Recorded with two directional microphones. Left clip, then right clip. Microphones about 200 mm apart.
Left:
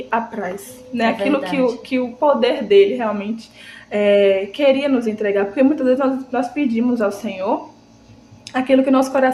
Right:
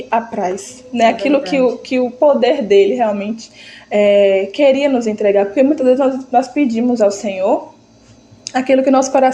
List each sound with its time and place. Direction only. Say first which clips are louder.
0.1 s a woman's voice: right 5 dB; 25° right (ahead or behind)